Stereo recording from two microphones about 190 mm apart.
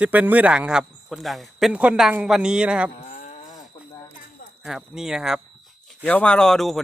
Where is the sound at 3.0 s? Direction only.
40° left (ahead or behind).